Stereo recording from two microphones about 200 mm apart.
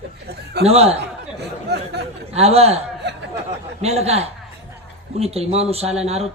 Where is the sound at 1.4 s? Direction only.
55° right (ahead or behind).